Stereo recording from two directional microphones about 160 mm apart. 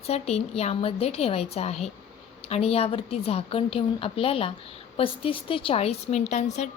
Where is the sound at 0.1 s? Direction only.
40° left (ahead or behind).